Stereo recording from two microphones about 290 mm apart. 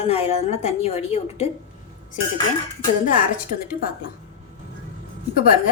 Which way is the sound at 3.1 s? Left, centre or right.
Left.